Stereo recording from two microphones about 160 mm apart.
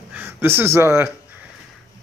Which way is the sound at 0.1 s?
10° right (ahead or behind).